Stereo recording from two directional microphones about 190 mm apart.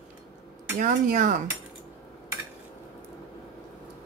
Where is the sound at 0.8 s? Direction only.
45° right (ahead or behind).